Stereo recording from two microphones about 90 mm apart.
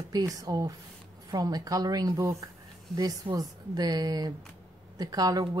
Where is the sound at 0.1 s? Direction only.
40° right (ahead or behind).